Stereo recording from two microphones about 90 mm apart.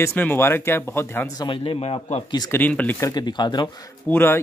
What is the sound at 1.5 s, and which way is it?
Speech, 90° left.